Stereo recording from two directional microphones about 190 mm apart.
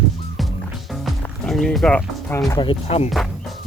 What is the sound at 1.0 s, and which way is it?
Music, centre (ahead or behind).